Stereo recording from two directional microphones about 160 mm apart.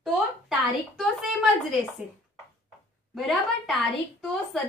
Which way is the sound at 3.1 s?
Centre (ahead or behind).